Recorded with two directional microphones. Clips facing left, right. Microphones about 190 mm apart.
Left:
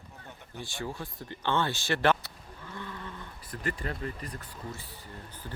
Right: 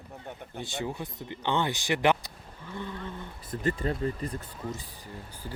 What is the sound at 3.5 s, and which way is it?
Speech, 25° right (ahead or behind).